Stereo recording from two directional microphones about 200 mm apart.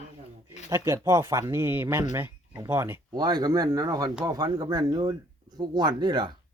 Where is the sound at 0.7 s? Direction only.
15° right (ahead or behind).